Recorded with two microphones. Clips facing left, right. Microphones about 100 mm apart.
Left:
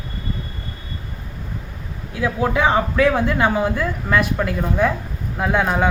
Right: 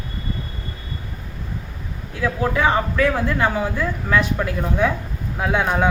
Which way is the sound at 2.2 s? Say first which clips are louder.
Left 1 dB; 20° left (ahead or behind).